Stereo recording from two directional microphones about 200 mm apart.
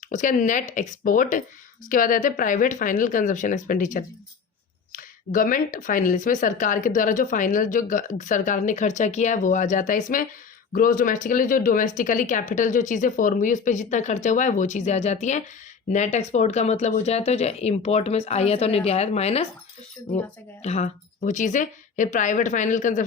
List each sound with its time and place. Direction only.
0.1 s speech: 40° left (ahead or behind)
20.6 s speech: 35° left (ahead or behind)